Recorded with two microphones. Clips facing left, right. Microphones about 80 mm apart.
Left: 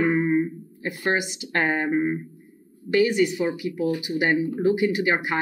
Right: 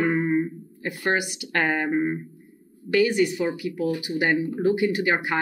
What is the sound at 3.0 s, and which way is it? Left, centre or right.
A woman's voice, centre.